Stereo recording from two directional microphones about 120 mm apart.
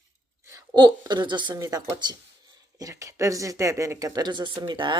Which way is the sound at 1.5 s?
25° right (ahead or behind).